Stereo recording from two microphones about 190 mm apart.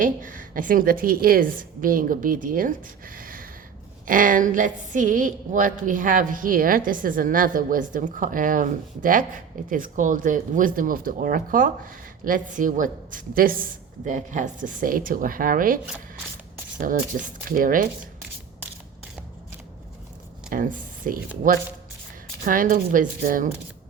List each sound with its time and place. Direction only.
0.0 s a woman's voice: 45° right (ahead or behind)
20.5 s a woman's voice: 45° right (ahead or behind)